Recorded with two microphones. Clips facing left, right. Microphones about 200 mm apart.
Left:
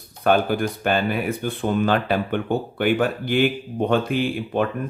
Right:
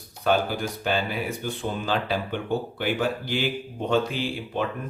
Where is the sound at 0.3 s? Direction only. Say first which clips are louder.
Left 5 dB; 55° left (ahead or behind).